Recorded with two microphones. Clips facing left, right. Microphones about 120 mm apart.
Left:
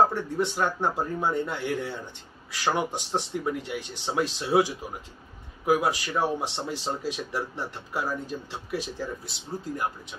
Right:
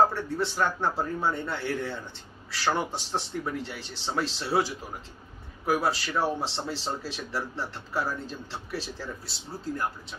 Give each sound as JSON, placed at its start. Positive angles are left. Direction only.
{"t": 0.1, "sound": "speech", "side_deg": 15}